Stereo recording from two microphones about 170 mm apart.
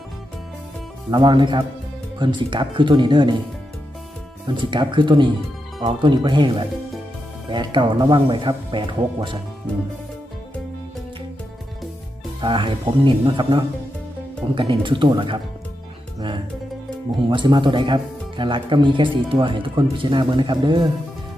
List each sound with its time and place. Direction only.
1.1 s speech: 25° right (ahead or behind)
4.4 s speech: 30° right (ahead or behind)
12.4 s speech: 30° right (ahead or behind)
17.2 s speech: 30° right (ahead or behind)